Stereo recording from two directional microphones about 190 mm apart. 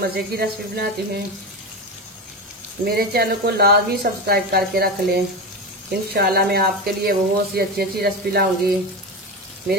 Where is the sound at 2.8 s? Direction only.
55° right (ahead or behind).